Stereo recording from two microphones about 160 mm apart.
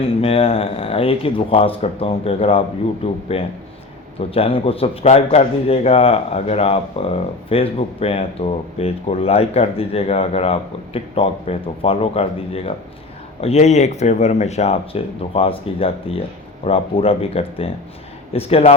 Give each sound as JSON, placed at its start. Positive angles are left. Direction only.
{"t": 0.0, "sound": "a man's voice", "side_deg": 35}